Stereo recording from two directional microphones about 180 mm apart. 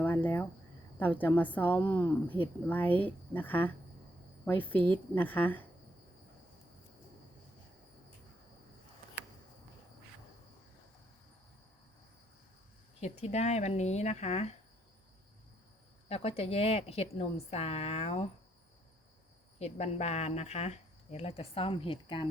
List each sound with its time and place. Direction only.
0.0 s a sound: 10° left (ahead or behind)
0.9 s speech: 10° left (ahead or behind)
13.0 s speech: 40° left (ahead or behind)
16.0 s speech: 35° left (ahead or behind)
19.5 s speech: 35° left (ahead or behind)